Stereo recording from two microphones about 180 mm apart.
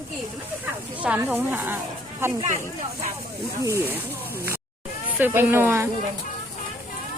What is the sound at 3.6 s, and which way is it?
Speech, 15° right (ahead or behind).